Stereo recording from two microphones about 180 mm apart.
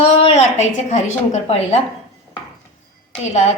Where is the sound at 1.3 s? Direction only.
35° left (ahead or behind).